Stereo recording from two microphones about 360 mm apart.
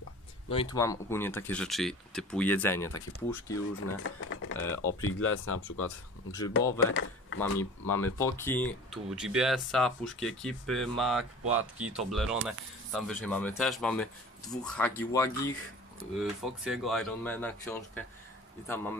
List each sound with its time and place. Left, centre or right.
0.5 s speech: centre
3.8 s speech: left
4.6 s speech: centre
5.0 s speech: left
7.3 s speech: centre